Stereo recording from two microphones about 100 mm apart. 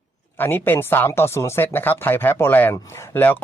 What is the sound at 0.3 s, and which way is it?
Speech, 20° left (ahead or behind).